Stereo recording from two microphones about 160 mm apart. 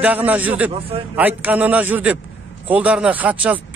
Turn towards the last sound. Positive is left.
turn(degrees=-10)  # may be behind; listen again after turning